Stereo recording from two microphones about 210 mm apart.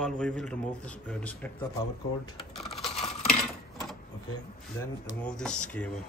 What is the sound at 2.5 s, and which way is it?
Coin, centre (ahead or behind).